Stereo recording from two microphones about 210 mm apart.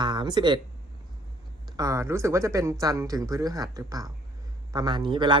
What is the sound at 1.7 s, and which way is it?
A man's voice, 15° right (ahead or behind).